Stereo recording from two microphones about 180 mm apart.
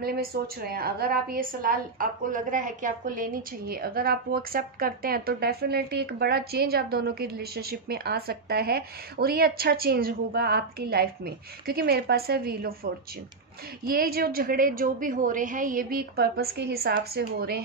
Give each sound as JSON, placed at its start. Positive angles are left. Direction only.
{"t": 0.0, "sound": "a woman's voice", "side_deg": -60}